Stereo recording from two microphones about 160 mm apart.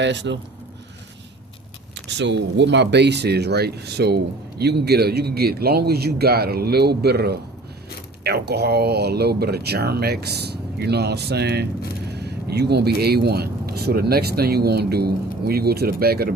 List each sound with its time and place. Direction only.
0.0 s speech: 90° right
2.1 s speech: 90° right; by 16.3 s 75° right (ahead or behind)